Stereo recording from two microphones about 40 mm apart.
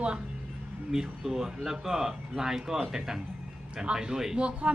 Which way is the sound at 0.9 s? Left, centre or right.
Centre.